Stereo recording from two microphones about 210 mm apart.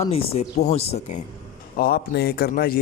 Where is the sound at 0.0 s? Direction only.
30° left (ahead or behind).